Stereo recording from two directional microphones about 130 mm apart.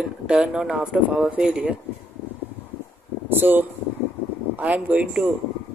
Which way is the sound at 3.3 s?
15° right (ahead or behind).